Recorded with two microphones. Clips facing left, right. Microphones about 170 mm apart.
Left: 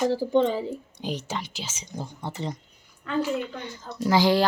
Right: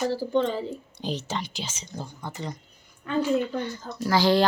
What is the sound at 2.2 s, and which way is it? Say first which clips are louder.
Speech: left 4 dB; 25° left (ahead or behind).